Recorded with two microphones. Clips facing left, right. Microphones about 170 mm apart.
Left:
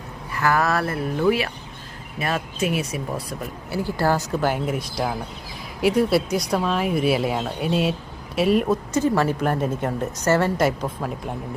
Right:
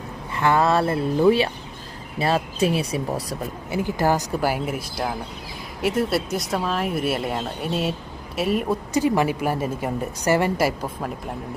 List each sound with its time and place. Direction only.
0.3 s speech: 25° right (ahead or behind)
3.7 s a woman's voice: 20° right (ahead or behind); by 8.8 s centre (ahead or behind)
8.9 s a woman's voice: 15° right (ahead or behind)